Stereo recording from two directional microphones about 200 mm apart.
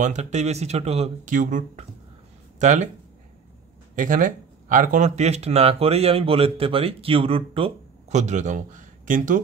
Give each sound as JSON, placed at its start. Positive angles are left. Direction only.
{"t": 0.0, "sound": "speech", "side_deg": -35}
{"t": 3.9, "sound": "speech", "side_deg": -40}